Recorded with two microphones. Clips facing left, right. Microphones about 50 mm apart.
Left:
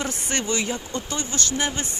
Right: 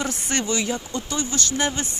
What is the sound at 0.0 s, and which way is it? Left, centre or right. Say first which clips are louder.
Speech: right 1 dB; centre.